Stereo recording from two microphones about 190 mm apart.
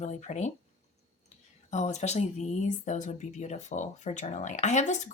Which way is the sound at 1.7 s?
35° left (ahead or behind).